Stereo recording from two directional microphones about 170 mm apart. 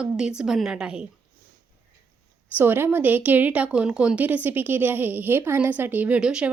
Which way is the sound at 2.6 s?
10° right (ahead or behind).